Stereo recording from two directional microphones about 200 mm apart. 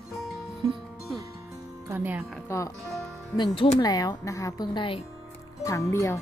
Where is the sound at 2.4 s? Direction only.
15° left (ahead or behind).